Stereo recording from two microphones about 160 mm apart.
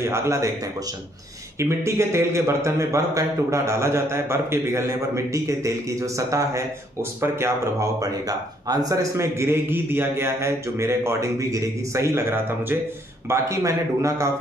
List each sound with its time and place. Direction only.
0.0 s a man's voice: 15° right (ahead or behind)
1.6 s a man's voice: 15° right (ahead or behind)